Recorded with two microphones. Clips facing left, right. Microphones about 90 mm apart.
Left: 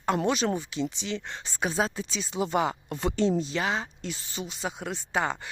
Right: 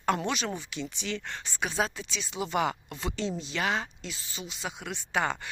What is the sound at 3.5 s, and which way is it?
Speech, 25° left (ahead or behind).